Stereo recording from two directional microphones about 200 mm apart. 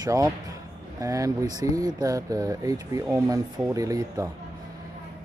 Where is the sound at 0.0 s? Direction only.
15° right (ahead or behind).